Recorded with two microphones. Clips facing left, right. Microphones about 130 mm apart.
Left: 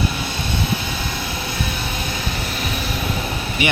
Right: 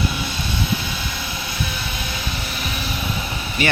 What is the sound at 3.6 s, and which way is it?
Speech, 20° left (ahead or behind).